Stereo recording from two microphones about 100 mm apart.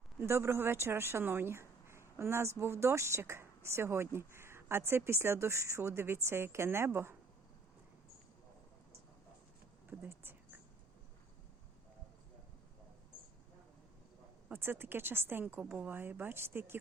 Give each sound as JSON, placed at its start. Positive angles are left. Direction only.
{"t": 0.2, "sound": "speech", "side_deg": -25}
{"t": 10.1, "sound": "a sound", "side_deg": -20}
{"t": 14.5, "sound": "speech", "side_deg": -25}